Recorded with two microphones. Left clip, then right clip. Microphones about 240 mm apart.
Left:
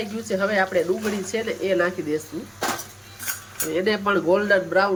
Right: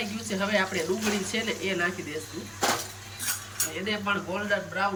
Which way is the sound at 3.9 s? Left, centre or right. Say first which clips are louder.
Left 10 dB; left.